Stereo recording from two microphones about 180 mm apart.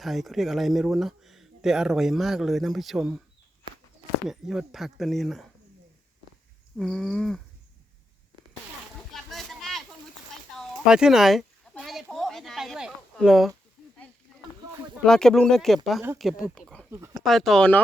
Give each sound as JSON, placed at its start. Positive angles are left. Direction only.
{"t": 0.0, "sound": "speech", "side_deg": 0}
{"t": 4.3, "sound": "speech", "side_deg": 0}
{"t": 6.7, "sound": "speech", "side_deg": 5}
{"t": 9.3, "sound": "a sound", "side_deg": 0}
{"t": 15.0, "sound": "speech", "side_deg": 5}
{"t": 16.9, "sound": "speech", "side_deg": -15}
{"t": 17.2, "sound": "speech", "side_deg": 0}